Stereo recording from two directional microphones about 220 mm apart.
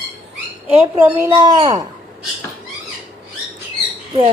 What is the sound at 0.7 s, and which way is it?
A woman's voice, 15° right (ahead or behind).